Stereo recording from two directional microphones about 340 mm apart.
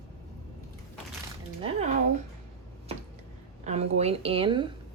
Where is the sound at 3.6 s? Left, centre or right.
Centre.